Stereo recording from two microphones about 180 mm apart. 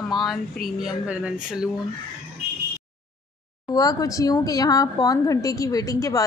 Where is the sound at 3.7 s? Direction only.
20° left (ahead or behind).